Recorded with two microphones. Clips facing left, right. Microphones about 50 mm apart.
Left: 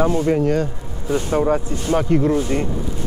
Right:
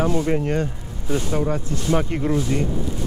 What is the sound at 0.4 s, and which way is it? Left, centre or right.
Speech, right.